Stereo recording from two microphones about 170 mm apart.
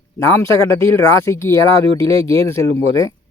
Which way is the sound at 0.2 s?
15° left (ahead or behind).